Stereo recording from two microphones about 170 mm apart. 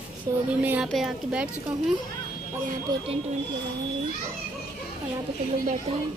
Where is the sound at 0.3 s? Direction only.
25° right (ahead or behind).